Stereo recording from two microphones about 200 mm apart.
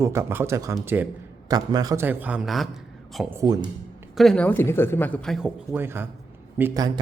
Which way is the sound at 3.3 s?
20° right (ahead or behind).